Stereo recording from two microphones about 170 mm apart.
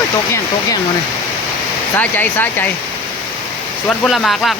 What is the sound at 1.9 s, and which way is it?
Speech, 10° left (ahead or behind).